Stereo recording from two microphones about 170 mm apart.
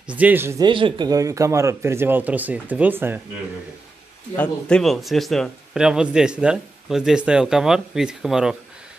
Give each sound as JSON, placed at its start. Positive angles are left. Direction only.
{"t": 0.1, "sound": "speech", "side_deg": -10}
{"t": 0.7, "sound": "speech", "side_deg": -30}
{"t": 4.4, "sound": "a man's voice", "side_deg": 5}